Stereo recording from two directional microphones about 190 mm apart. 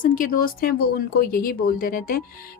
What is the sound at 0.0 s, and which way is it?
A woman's voice, 45° left (ahead or behind).